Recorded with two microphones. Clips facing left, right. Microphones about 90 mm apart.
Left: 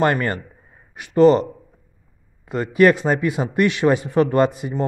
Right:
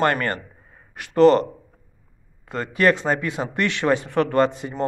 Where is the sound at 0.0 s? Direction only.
15° left (ahead or behind).